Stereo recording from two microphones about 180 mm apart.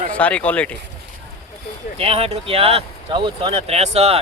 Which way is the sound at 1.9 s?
35° right (ahead or behind).